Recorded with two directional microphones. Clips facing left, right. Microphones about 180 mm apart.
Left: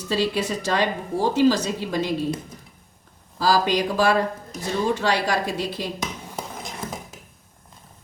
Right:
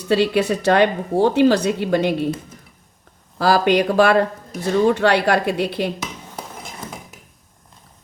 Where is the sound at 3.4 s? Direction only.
60° right (ahead or behind).